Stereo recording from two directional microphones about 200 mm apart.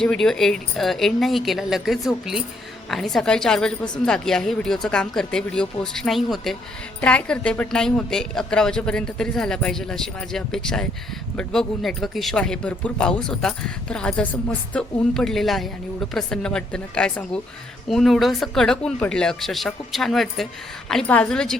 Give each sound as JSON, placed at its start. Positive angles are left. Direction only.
{"t": 0.0, "sound": "speech", "side_deg": 5}